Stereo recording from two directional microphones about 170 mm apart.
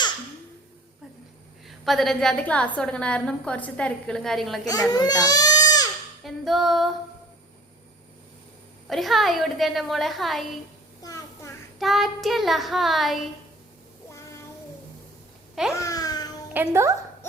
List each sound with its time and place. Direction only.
1.6 s a woman's voice: centre (ahead or behind)
4.6 s speech: 20° left (ahead or behind)
6.2 s a woman's voice: centre (ahead or behind)
8.9 s a woman's voice: centre (ahead or behind)
11.0 s a sound: 20° left (ahead or behind)
11.8 s a woman's voice: centre (ahead or behind)
15.7 s babbling: 20° left (ahead or behind)
16.6 s a woman's voice: 15° right (ahead or behind)